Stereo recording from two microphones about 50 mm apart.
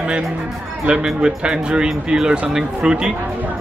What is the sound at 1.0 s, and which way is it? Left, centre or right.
Speech, centre.